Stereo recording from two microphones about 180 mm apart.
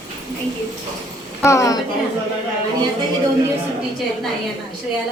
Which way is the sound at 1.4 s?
15° left (ahead or behind).